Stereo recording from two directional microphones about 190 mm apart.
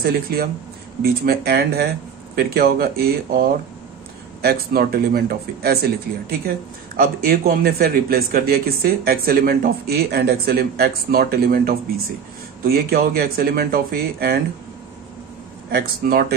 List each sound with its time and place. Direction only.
0.0 s speech: 55° right (ahead or behind)
7.0 s speech: 50° right (ahead or behind)
15.7 s speech: 55° right (ahead or behind)